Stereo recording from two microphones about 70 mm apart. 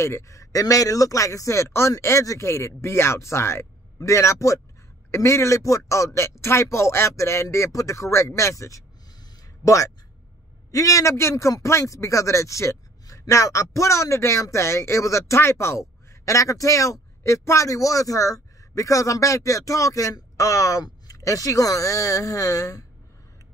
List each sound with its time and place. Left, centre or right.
0.0 s speech: left
10.7 s speech: left